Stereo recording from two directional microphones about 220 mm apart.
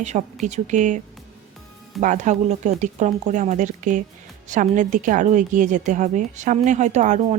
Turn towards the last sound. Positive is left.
turn(degrees=-35)  # may be behind; listen again after turning